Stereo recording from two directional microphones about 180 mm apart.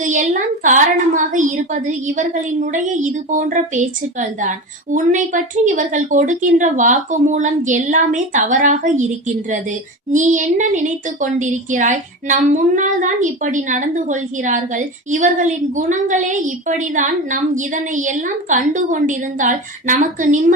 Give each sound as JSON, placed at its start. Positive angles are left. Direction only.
{"t": 0.0, "sound": "a woman's voice", "side_deg": -45}